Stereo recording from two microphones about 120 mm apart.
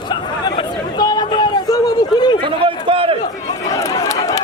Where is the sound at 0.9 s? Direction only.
35° left (ahead or behind).